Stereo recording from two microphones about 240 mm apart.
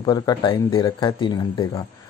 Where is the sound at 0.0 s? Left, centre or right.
Centre.